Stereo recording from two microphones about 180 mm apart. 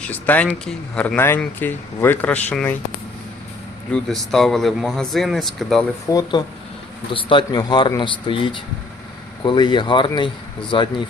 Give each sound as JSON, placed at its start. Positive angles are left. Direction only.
{"t": 0.0, "sound": "speech", "side_deg": 10}
{"t": 3.9, "sound": "speech", "side_deg": 0}
{"t": 6.1, "sound": "speech", "side_deg": 20}